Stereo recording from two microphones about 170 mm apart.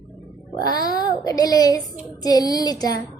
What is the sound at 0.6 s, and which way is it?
A woman's voice, 25° left (ahead or behind).